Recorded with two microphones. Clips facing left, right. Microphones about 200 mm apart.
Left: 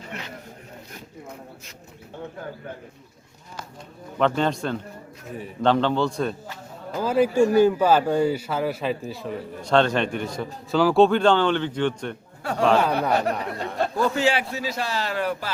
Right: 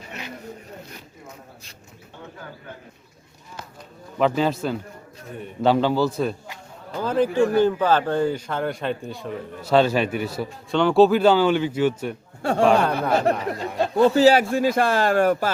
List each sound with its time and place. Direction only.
4.4 s speech: 5° right (ahead or behind)
6.9 s speech: 10° left (ahead or behind); by 12.1 s 5° right (ahead or behind)
12.4 s speech: 25° right (ahead or behind)
12.8 s speech: 5° left (ahead or behind)
13.7 s speech: 20° right (ahead or behind)
14.1 s speech: 35° right (ahead or behind)